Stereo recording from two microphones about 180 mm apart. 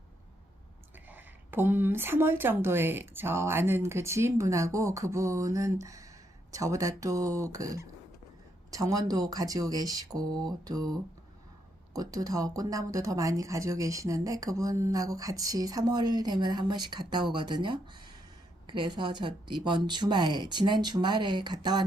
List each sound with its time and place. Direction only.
1.0 s speech: 10° right (ahead or behind)
11.9 s speech: 20° right (ahead or behind)